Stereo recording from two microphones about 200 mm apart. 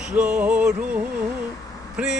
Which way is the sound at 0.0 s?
5° right (ahead or behind).